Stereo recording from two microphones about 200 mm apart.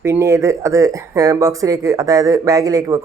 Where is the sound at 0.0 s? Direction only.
15° right (ahead or behind).